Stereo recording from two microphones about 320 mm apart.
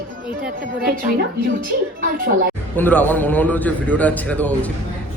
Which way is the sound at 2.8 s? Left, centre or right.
Centre.